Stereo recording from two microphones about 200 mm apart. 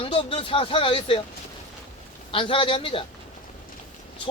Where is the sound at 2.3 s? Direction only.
25° left (ahead or behind).